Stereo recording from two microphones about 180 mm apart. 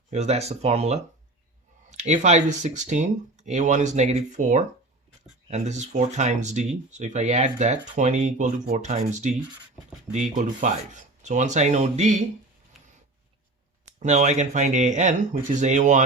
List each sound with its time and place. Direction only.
0.1 s speech: 40° right (ahead or behind)
14.0 s speech: 40° right (ahead or behind)